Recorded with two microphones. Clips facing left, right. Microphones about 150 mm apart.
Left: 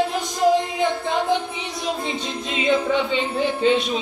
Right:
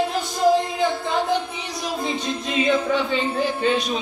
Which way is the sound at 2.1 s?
25° left (ahead or behind).